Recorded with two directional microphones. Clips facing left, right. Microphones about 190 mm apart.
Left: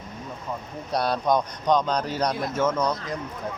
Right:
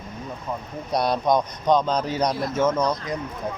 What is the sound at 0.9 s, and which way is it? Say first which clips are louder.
Speech: right 2 dB; 15° right (ahead or behind).